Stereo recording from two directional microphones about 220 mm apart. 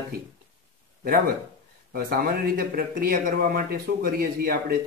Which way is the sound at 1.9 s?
40° right (ahead or behind).